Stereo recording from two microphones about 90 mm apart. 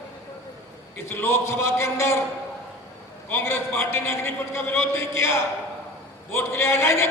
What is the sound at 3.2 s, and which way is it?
A man's voice, 25° left (ahead or behind).